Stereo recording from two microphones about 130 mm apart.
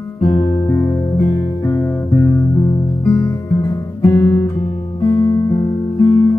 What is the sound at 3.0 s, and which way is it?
Music, 20° left (ahead or behind).